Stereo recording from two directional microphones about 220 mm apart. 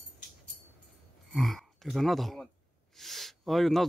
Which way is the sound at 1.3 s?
Centre (ahead or behind).